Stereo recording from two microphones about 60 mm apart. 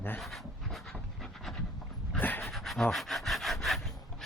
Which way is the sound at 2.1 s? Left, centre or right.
Left.